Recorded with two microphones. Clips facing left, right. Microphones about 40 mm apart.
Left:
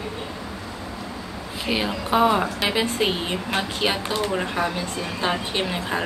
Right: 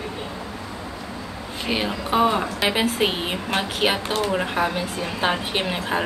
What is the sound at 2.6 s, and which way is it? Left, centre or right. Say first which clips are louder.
A woman's voice: right 1 dB; centre.